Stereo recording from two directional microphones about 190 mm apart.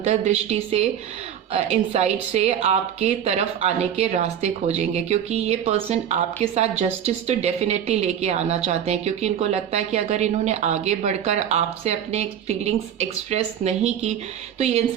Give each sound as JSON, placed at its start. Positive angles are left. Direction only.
{"t": 0.0, "sound": "speech", "side_deg": -35}